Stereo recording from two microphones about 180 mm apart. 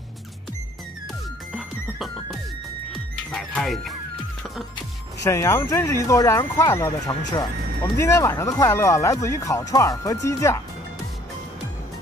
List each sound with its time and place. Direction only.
1.9 s music: centre (ahead or behind)
5.2 s speech: 15° left (ahead or behind)